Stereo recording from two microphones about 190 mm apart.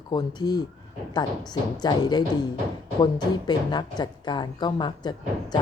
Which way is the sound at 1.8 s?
20° left (ahead or behind).